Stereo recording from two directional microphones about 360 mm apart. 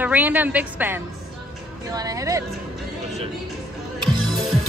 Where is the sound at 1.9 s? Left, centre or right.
Centre.